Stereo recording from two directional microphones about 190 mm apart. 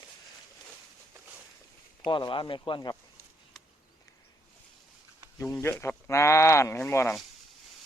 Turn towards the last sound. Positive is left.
turn(degrees=15)  # may be behind; listen again after turning